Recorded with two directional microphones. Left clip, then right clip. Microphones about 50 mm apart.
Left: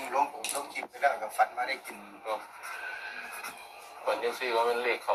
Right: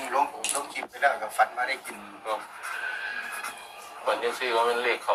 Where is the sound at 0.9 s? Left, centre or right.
Right.